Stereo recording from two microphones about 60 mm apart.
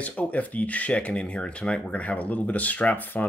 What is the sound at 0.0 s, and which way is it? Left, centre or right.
Speech, left.